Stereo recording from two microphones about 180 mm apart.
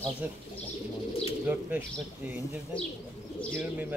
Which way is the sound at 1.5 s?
10° right (ahead or behind).